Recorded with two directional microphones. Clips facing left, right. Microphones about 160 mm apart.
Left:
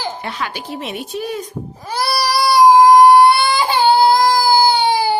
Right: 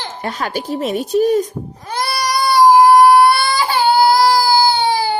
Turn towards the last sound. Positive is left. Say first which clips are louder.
# left 1 dB
turn(degrees=15)  # may be behind; listen again after turning